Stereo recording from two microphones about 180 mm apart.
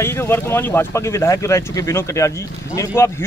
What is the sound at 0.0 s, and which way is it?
Speech, 15° left (ahead or behind).